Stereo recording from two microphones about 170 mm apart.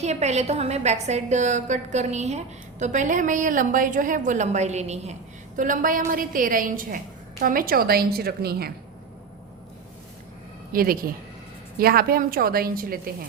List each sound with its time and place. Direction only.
0.0 s a woman's voice: 40° right (ahead or behind); by 8.7 s 65° right (ahead or behind)
10.7 s a woman's voice: 60° right (ahead or behind)